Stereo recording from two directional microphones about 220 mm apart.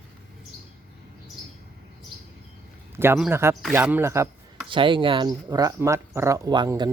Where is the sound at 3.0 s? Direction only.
10° right (ahead or behind).